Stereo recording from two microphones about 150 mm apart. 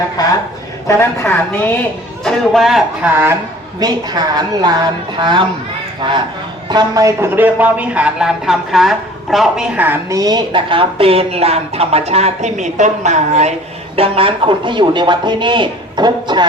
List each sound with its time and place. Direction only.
0.2 s a woman's voice: 25° left (ahead or behind)
2.2 s a man's voice: 5° left (ahead or behind)
3.8 s a woman's voice: 25° right (ahead or behind); by 13.5 s 50° right (ahead or behind)
13.9 s speech: 40° right (ahead or behind)